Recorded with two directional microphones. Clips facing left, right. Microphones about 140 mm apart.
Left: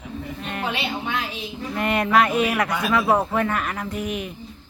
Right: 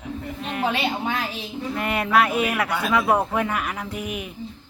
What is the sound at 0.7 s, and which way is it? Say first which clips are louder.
Speech: right 2 dB; 40° right (ahead or behind).